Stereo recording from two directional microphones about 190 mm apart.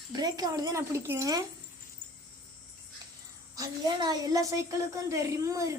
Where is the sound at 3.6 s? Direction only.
20° right (ahead or behind).